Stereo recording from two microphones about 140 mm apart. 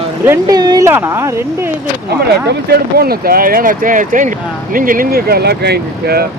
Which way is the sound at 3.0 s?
90° right.